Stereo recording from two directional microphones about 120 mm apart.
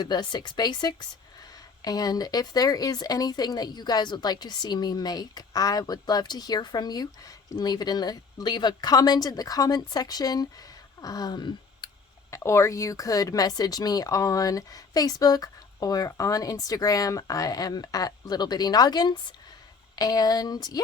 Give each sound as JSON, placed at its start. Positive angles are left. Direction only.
{"t": 0.0, "sound": "speech", "side_deg": 35}
{"t": 11.0, "sound": "a sound", "side_deg": 30}
{"t": 12.3, "sound": "speech", "side_deg": 20}